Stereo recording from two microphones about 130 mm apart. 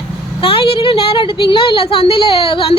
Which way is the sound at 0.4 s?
45° left (ahead or behind).